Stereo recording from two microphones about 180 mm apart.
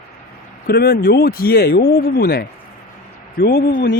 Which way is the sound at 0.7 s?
60° left (ahead or behind).